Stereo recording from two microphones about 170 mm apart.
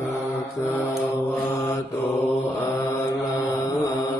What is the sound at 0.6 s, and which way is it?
Mantra, 15° left (ahead or behind).